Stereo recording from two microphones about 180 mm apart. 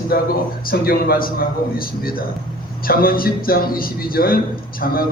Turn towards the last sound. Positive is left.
turn(degrees=55)  # may be behind; listen again after turning